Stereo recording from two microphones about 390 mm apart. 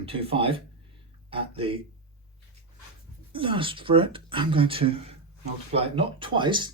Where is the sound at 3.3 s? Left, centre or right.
Centre.